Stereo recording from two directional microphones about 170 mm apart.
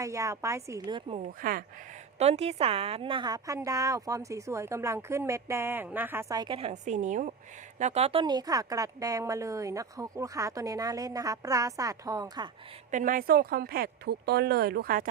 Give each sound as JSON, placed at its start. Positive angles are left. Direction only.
{"t": 0.0, "sound": "a woman's voice", "side_deg": -20}
{"t": 1.2, "sound": "speech", "side_deg": -55}
{"t": 2.1, "sound": "a woman's voice", "side_deg": -40}
{"t": 6.6, "sound": "a woman's voice", "side_deg": -40}
{"t": 12.9, "sound": "speech", "side_deg": -50}